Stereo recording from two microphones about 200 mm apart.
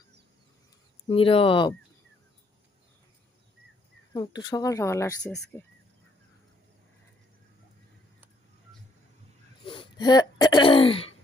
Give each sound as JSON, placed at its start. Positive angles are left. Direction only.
{"t": 1.0, "sound": "speech", "side_deg": 25}
{"t": 4.1, "sound": "speech", "side_deg": 20}
{"t": 9.6, "sound": "speech", "side_deg": 20}